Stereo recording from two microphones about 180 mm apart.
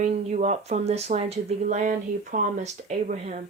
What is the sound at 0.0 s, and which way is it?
Speech, 40° right (ahead or behind).